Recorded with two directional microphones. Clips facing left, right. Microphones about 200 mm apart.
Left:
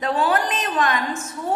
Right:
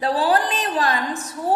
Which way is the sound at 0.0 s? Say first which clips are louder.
Right 1 dB; 35° right (ahead or behind).